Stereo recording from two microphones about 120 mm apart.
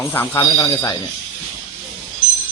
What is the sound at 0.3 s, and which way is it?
Speech, 30° left (ahead or behind).